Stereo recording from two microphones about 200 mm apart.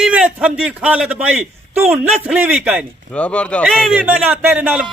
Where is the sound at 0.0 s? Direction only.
5° right (ahead or behind).